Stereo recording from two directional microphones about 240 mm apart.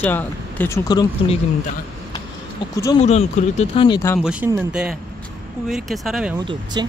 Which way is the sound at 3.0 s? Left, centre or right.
Left.